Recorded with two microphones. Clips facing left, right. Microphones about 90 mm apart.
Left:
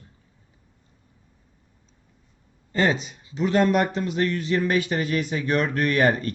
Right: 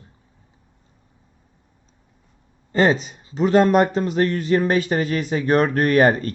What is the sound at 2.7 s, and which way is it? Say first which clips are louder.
Speech: right 5 dB; 35° right (ahead or behind).